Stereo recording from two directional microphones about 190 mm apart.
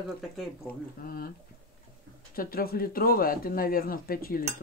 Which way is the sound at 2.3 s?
50° left (ahead or behind).